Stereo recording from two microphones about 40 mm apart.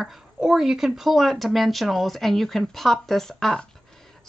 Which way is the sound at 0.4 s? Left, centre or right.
Centre.